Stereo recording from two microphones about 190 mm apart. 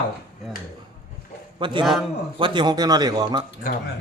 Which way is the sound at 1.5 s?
25° right (ahead or behind).